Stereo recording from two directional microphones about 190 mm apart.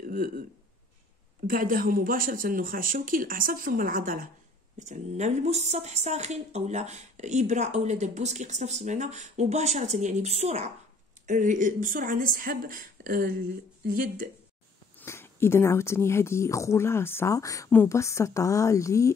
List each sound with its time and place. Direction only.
0.0 s a sound: 45° right (ahead or behind)
1.5 s a woman's voice: 50° right (ahead or behind)
15.0 s speech: 10° left (ahead or behind)